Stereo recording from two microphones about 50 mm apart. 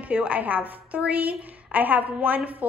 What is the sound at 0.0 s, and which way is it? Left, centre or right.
A woman's voice, right.